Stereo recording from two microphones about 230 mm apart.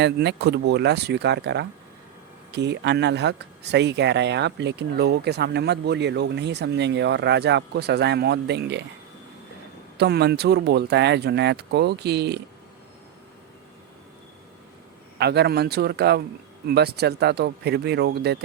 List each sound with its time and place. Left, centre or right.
0.0 s speech: right
10.0 s speech: right
15.2 s speech: right